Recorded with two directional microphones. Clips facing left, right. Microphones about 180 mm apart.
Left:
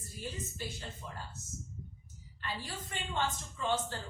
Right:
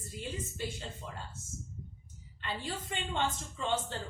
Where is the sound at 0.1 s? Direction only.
20° right (ahead or behind).